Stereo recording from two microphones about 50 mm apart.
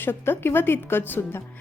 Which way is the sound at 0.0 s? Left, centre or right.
Left.